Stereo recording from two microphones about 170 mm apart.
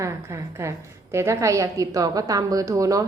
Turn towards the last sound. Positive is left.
turn(degrees=-20)  # may be behind; listen again after turning